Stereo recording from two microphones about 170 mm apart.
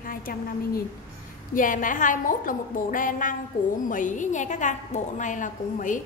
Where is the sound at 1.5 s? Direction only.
50° left (ahead or behind).